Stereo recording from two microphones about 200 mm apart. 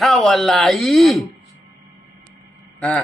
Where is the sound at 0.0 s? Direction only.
Centre (ahead or behind).